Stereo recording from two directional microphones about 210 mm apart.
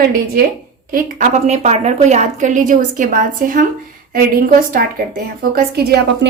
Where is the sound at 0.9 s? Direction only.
40° right (ahead or behind).